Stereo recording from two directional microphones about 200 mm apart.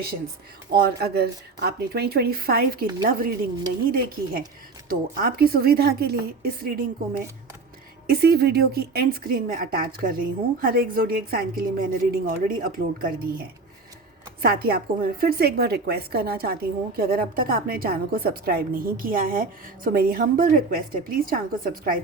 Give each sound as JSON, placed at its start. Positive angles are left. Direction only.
{"t": 0.7, "sound": "a woman's voice", "side_deg": -50}
{"t": 14.4, "sound": "a woman's voice", "side_deg": -50}